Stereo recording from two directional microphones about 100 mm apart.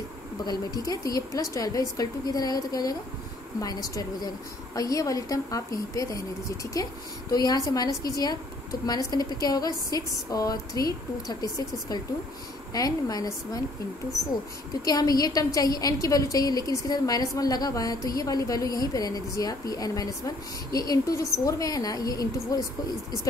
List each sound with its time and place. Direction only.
0.8 s a woman's voice: 35° left (ahead or behind)
14.9 s a woman's voice: 40° left (ahead or behind)